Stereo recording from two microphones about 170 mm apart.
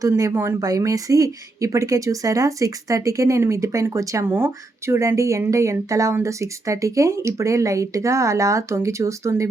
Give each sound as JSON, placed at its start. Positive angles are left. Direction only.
{"t": 0.0, "sound": "speech", "side_deg": -20}